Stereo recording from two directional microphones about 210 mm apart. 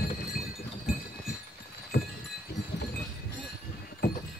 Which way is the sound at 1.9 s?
45° left (ahead or behind).